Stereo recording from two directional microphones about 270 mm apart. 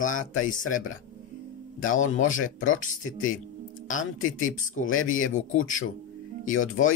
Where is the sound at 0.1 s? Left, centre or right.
Left.